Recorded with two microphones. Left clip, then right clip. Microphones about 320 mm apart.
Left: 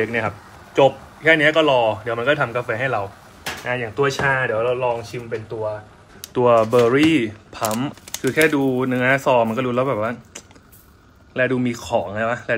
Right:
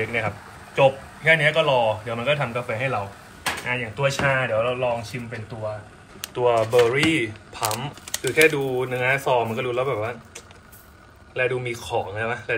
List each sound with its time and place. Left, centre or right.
0.0 s a man's voice: left
6.3 s a man's voice: left